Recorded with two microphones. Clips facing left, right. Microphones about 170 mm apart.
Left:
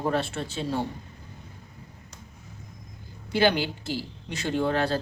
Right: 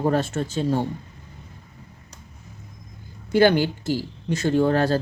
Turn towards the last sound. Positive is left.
turn(degrees=-45)  # may be behind; listen again after turning